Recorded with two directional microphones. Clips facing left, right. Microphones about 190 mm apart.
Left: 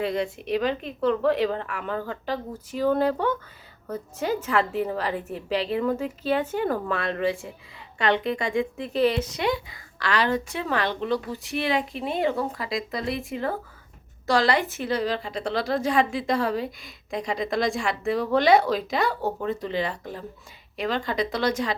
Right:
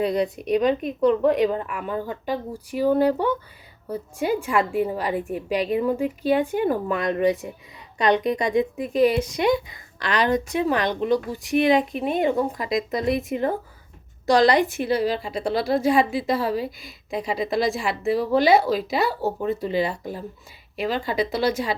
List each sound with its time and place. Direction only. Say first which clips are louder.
0.0 s a woman's voice: right 4 dB; 20° right (ahead or behind)